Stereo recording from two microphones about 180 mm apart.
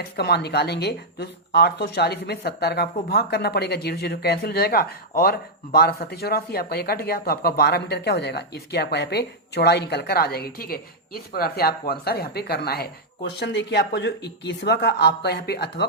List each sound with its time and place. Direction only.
0.0 s a woman's voice: 65° left (ahead or behind)